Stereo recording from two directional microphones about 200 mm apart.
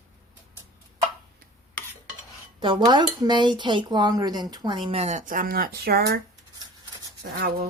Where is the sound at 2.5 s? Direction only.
25° right (ahead or behind); by 6.2 s 50° right (ahead or behind).